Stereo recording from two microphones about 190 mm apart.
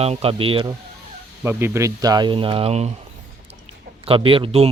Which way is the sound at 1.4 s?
15° right (ahead or behind).